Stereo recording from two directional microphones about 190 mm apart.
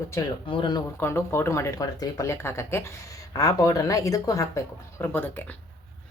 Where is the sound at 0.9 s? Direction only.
15° left (ahead or behind).